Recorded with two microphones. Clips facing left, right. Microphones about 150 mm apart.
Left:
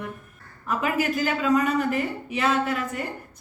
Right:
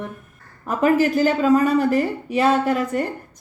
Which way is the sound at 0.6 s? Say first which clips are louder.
Right 7 dB; 40° right (ahead or behind).